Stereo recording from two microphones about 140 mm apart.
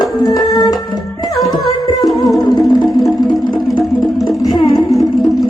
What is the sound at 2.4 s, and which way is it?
Music, 30° left (ahead or behind).